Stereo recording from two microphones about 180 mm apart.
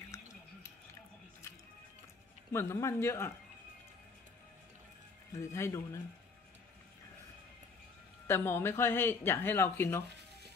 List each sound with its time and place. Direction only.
0.1 s a sound: 15° left (ahead or behind)
2.5 s speech: 15° left (ahead or behind)
5.3 s speech: 15° left (ahead or behind)
8.3 s speech: 15° left (ahead or behind)